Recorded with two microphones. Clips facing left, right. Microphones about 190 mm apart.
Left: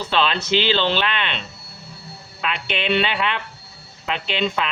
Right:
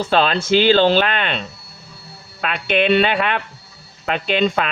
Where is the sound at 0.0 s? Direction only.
45° right (ahead or behind).